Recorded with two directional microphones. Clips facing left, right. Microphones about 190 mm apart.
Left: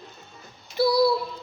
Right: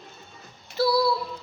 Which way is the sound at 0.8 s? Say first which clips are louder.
Left 2 dB; 15° left (ahead or behind).